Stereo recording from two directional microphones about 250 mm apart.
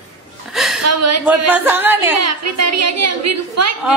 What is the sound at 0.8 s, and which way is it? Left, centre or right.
Speech, right.